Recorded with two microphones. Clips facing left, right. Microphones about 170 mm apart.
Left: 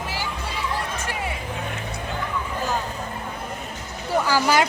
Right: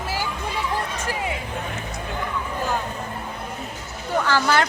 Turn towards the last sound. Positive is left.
turn(degrees=10)  # may be behind; listen again after turning